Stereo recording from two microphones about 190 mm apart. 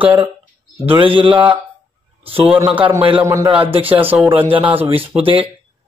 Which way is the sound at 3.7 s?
30° right (ahead or behind).